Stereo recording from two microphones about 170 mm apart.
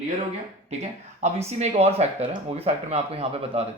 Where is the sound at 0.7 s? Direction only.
40° right (ahead or behind).